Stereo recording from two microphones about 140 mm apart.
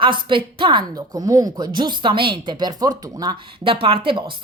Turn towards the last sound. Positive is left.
turn(degrees=-40)  # may be behind; listen again after turning